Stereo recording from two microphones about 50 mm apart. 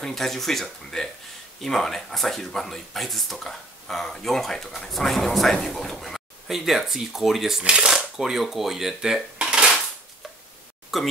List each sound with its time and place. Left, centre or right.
0.0 s speech: centre
7.6 s speech: centre
8.2 s speech: centre
10.9 s speech: centre